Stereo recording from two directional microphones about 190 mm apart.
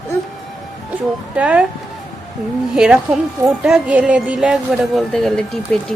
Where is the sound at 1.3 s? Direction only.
5° right (ahead or behind).